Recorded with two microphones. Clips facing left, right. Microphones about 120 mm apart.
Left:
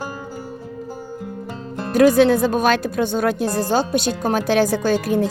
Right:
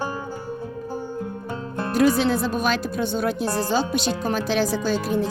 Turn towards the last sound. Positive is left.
turn(degrees=55)  # may be behind; listen again after turning